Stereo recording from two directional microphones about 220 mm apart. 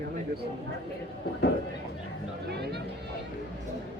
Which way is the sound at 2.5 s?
50° right (ahead or behind).